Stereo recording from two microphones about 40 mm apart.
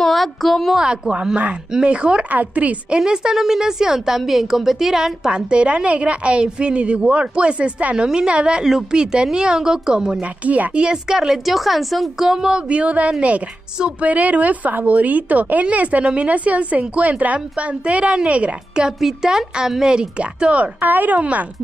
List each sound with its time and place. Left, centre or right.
0.0 s a woman's voice: centre
0.7 s a woman's voice: right
2.3 s a woman's voice: right
3.0 s a woman's voice: centre
3.3 s a woman's voice: centre
5.5 s a woman's voice: right
10.2 s a woman's voice: right
10.7 s a woman's voice: right
11.4 s a woman's voice: centre
12.3 s a woman's voice: centre
12.6 s a woman's voice: right
18.9 s a woman's voice: centre
19.8 s a woman's voice: right
20.8 s speech: right